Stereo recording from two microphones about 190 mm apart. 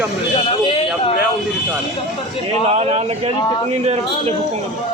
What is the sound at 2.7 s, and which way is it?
Speech, 35° right (ahead or behind).